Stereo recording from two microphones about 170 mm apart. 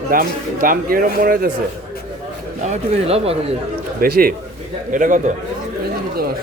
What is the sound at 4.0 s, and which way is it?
Speech, 60° right (ahead or behind).